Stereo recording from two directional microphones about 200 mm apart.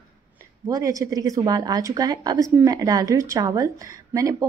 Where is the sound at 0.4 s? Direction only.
15° right (ahead or behind).